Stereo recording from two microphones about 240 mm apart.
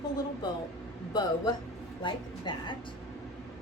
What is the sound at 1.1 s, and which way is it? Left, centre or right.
Speech, centre.